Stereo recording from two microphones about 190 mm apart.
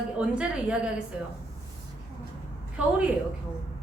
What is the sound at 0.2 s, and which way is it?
Speech, 5° right (ahead or behind).